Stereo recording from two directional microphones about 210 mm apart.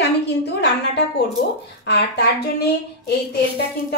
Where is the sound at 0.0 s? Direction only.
55° left (ahead or behind).